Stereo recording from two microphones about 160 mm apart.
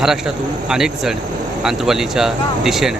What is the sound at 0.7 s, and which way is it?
Speech, 5° right (ahead or behind).